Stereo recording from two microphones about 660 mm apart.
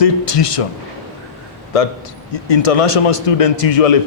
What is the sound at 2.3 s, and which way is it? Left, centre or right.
A man's voice, left.